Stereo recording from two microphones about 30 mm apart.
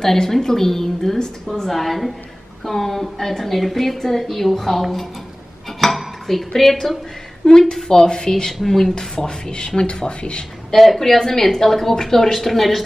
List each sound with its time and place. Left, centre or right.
0.0 s a woman's voice: centre
5.8 s dishes: centre
7.4 s speech: left
8.6 s a woman's voice: centre
8.9 s speech: left
10.7 s a woman's voice: centre